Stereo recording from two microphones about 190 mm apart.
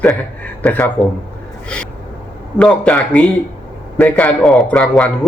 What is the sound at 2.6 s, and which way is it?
A man's voice, 5° left (ahead or behind).